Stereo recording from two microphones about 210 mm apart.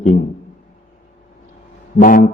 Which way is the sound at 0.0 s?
40° left (ahead or behind).